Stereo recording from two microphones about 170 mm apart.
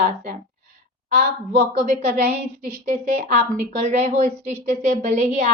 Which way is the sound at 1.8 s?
45° right (ahead or behind).